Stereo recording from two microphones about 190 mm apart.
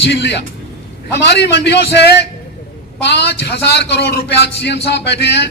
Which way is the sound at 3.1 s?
65° left (ahead or behind).